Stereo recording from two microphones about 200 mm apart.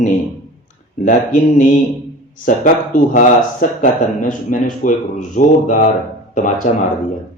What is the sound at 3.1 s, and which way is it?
Speech, 40° left (ahead or behind).